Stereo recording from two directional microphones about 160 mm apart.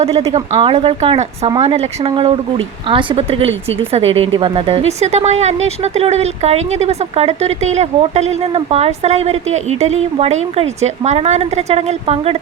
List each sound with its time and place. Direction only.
0.0 s speech: 40° right (ahead or behind)